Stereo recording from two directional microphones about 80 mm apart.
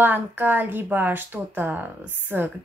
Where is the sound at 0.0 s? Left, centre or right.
Right.